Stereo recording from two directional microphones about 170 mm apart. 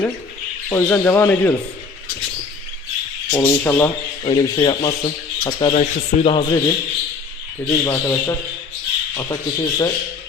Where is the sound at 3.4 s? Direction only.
10° left (ahead or behind).